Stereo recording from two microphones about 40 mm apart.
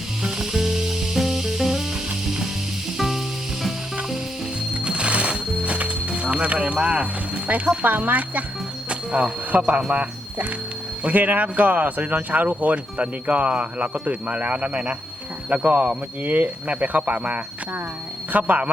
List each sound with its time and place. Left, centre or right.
0.2 s music: centre
4.7 s music: right
7.7 s speech: right
8.9 s speech: right